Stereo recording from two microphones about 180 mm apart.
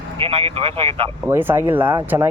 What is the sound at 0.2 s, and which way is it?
Speech, 30° right (ahead or behind).